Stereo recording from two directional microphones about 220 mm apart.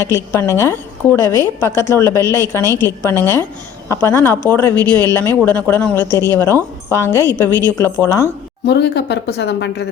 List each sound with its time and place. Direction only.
0.0 s a woman's voice: 10° left (ahead or behind)
8.6 s speech: 50° left (ahead or behind)